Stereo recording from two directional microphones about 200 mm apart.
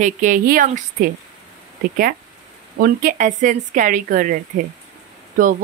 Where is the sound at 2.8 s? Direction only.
45° right (ahead or behind).